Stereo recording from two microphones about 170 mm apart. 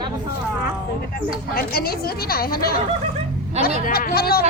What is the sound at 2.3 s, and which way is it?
Speech, 60° left (ahead or behind).